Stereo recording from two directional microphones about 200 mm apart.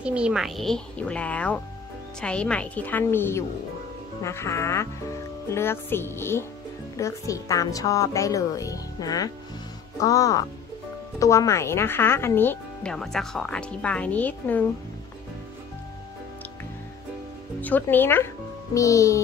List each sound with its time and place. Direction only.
0.0 s a woman's voice: 5° right (ahead or behind)
17.6 s a child's voice: 10° left (ahead or behind)